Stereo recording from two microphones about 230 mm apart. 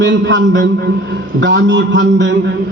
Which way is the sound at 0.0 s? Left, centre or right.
Right.